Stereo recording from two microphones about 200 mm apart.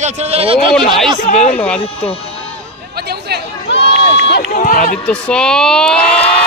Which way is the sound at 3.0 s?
55° right (ahead or behind).